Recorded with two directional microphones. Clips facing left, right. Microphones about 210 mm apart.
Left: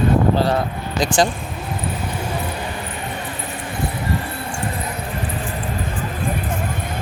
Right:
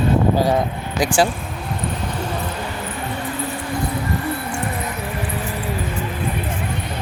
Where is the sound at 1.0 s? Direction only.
10° right (ahead or behind).